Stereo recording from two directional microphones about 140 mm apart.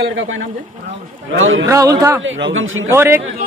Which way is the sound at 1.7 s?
25° right (ahead or behind).